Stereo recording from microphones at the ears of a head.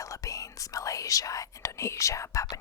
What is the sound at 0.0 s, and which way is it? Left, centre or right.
Speech, left.